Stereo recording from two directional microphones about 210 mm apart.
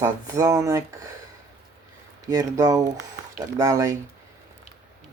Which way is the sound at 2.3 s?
15° right (ahead or behind).